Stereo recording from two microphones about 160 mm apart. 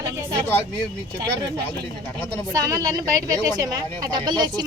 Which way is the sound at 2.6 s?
20° right (ahead or behind).